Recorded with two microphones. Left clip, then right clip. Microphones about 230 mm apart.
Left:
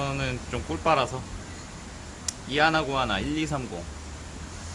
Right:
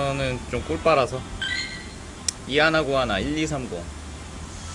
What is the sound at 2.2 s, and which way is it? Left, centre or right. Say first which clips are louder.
Speech: right 3 dB; centre.